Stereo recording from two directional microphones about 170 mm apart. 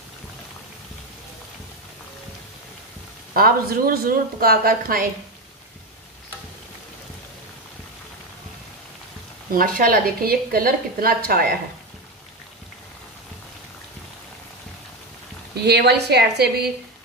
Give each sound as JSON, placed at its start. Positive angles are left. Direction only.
{"t": 3.3, "sound": "a woman's voice", "side_deg": -60}
{"t": 9.5, "sound": "a woman's voice", "side_deg": -55}
{"t": 15.5, "sound": "a woman's voice", "side_deg": -70}